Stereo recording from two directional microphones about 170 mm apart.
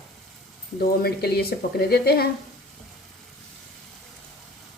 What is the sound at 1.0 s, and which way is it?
Speech, 70° left (ahead or behind).